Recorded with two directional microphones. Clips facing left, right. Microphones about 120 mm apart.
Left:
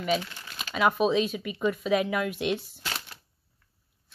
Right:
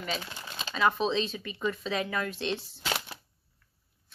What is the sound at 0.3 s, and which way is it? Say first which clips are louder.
Crumpling: right 2 dB; 20° right (ahead or behind).